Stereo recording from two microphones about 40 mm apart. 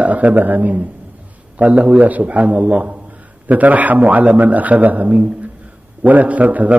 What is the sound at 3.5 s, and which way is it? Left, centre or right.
A man's voice, right.